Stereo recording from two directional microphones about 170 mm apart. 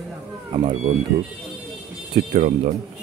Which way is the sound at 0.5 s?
40° right (ahead or behind).